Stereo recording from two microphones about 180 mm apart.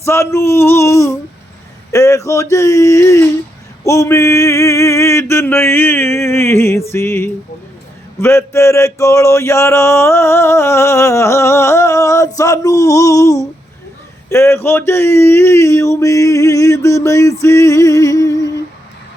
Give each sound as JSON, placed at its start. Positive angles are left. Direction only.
{"t": 0.0, "sound": "male singing", "side_deg": 15}